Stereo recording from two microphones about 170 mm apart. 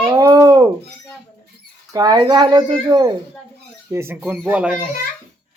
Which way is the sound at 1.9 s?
25° right (ahead or behind).